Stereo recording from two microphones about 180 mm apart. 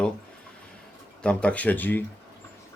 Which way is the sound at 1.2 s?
5° left (ahead or behind).